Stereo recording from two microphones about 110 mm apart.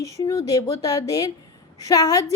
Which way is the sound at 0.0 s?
30° left (ahead or behind).